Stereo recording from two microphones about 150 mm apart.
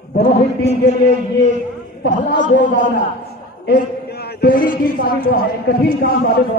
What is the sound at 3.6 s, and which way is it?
A man's voice, 90° left.